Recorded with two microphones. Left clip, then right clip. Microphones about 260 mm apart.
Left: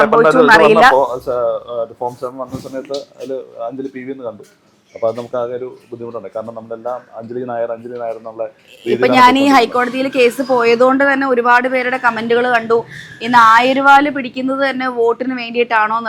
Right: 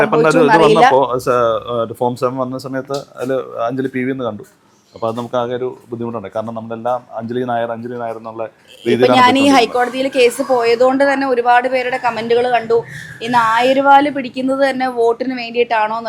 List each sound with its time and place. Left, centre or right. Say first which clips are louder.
0.0 s speech: left 2 dB; right
4.9 s speech: left 1 dB; right
9.0 s a woman's voice: left 1 dB; centre